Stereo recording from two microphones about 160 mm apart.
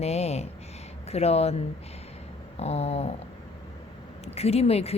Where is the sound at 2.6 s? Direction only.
40° left (ahead or behind).